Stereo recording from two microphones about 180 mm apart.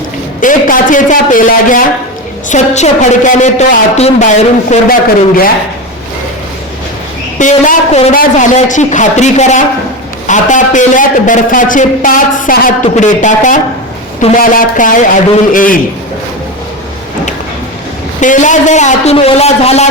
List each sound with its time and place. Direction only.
0.3 s a man's voice: 50° left (ahead or behind)
7.3 s a man's voice: 45° left (ahead or behind)
18.2 s a woman's voice: 45° left (ahead or behind)